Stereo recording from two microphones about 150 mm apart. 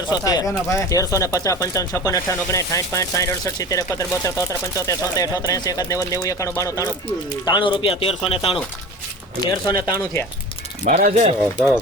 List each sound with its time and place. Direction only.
0.1 s speech: 25° left (ahead or behind)
9.5 s speech: 20° left (ahead or behind)
10.8 s speech: 65° right (ahead or behind)
11.1 s speech: 45° right (ahead or behind)